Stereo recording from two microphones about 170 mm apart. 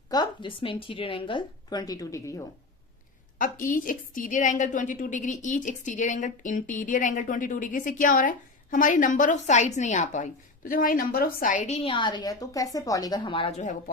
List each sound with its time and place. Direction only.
0.1 s a woman's voice: 25° left (ahead or behind)
3.4 s a woman's voice: 50° left (ahead or behind)